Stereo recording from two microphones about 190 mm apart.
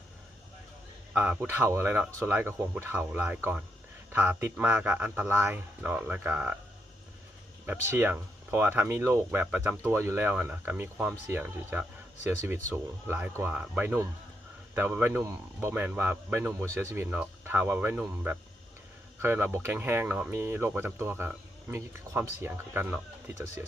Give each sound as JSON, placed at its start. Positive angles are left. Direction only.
{"t": 1.1, "sound": "speech", "side_deg": -5}
{"t": 7.9, "sound": "speech", "side_deg": -10}